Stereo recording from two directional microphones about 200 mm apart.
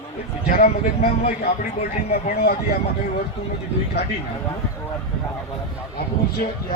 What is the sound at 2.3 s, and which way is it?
Speech, 55° left (ahead or behind).